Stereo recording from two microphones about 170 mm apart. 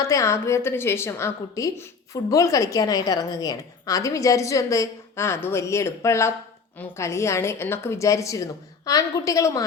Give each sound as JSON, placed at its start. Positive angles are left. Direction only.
{"t": 0.0, "sound": "a woman's voice", "side_deg": 20}